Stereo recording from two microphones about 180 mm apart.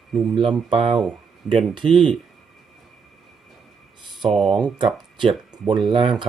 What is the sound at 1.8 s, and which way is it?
Speech, 30° right (ahead or behind).